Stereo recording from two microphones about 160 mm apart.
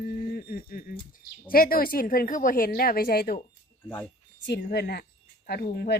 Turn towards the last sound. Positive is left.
turn(degrees=80)